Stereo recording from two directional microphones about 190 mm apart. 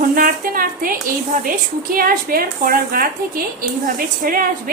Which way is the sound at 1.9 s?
50° right (ahead or behind).